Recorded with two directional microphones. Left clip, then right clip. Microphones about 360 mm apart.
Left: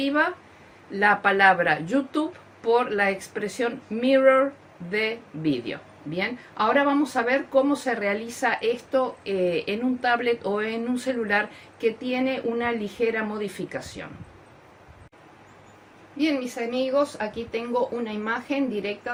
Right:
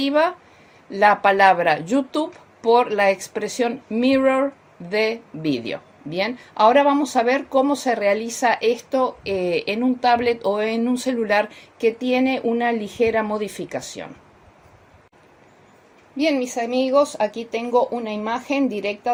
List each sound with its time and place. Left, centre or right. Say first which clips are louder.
0.0 s speech: right 5 dB; right
16.1 s speech: right 5 dB; right